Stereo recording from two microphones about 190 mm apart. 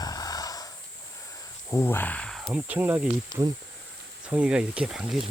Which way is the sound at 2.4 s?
10° right (ahead or behind).